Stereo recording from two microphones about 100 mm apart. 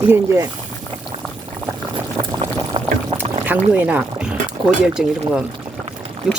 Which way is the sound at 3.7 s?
15° right (ahead or behind).